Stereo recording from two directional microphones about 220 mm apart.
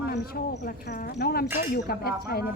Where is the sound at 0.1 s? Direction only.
45° left (ahead or behind).